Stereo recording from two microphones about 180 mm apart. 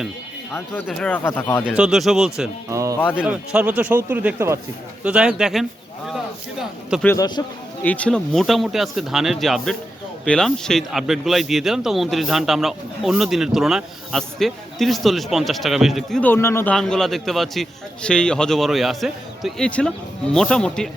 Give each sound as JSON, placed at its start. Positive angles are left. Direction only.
{"t": 0.9, "sound": "speech", "side_deg": 5}
{"t": 1.2, "sound": "speech", "side_deg": 15}
{"t": 1.6, "sound": "speech", "side_deg": -5}
{"t": 2.6, "sound": "speech", "side_deg": -15}
{"t": 3.0, "sound": "speech", "side_deg": 10}
{"t": 3.2, "sound": "speech", "side_deg": -10}
{"t": 7.0, "sound": "speech", "side_deg": 10}
{"t": 16.7, "sound": "speech", "side_deg": 0}